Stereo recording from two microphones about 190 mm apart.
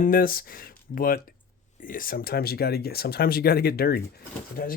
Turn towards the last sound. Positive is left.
turn(degrees=50)  # may be behind; listen again after turning